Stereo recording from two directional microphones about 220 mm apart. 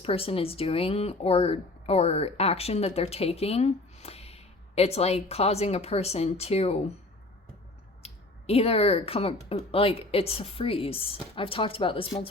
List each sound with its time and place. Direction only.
0.0 s speech: 25° left (ahead or behind)
8.0 s speech: 25° left (ahead or behind)